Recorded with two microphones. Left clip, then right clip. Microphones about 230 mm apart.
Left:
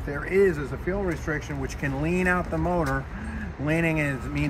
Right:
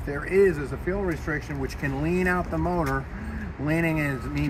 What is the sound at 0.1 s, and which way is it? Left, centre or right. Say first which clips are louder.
Speech: right 1 dB; centre.